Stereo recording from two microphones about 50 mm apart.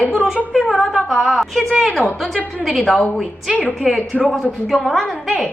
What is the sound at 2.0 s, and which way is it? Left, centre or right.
Speech, right.